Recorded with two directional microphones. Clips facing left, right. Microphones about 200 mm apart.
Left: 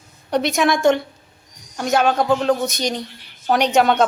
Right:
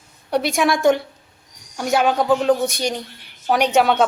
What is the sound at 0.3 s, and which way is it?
A woman's voice, 5° right (ahead or behind).